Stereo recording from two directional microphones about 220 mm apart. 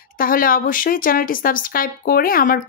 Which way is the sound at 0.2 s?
40° left (ahead or behind).